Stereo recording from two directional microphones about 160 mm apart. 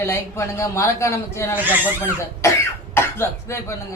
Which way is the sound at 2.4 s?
15° left (ahead or behind).